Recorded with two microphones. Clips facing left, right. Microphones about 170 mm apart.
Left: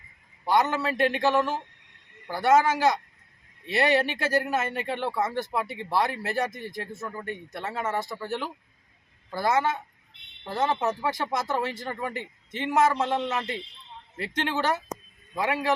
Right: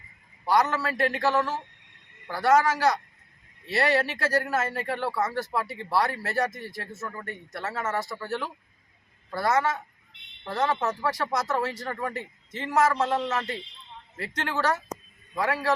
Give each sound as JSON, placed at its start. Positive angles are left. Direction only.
{"t": 0.4, "sound": "speech", "side_deg": 20}
{"t": 9.3, "sound": "speech", "side_deg": 20}
{"t": 10.4, "sound": "speech", "side_deg": 10}